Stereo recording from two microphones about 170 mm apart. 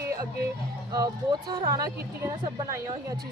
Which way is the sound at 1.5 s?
25° right (ahead or behind).